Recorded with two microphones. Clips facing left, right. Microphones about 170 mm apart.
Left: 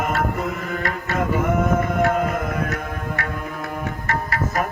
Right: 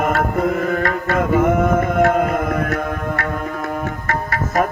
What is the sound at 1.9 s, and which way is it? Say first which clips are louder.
Music: right 4 dB; 50° right (ahead or behind).